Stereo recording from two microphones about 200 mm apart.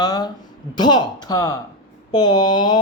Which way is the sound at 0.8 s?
20° left (ahead or behind).